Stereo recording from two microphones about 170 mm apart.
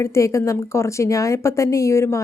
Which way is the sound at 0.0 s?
15° left (ahead or behind).